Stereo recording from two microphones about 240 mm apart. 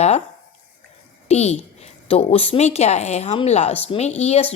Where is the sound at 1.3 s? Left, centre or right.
Left.